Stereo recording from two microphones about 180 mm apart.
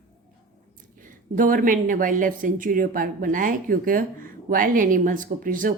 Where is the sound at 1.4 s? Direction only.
50° right (ahead or behind).